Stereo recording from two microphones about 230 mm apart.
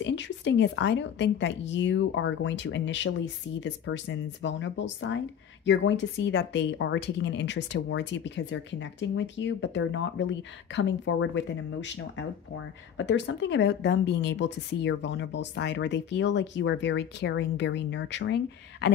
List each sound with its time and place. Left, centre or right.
0.0 s speech: left